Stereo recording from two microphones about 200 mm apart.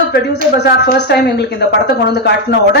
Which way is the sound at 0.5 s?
55° left (ahead or behind).